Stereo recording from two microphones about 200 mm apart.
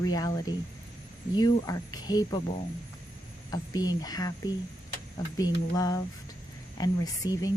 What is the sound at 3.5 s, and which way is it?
Speech, 20° left (ahead or behind).